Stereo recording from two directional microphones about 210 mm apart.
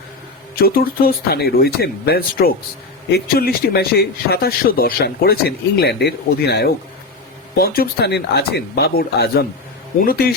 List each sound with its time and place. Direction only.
0.5 s a man's voice: 45° left (ahead or behind)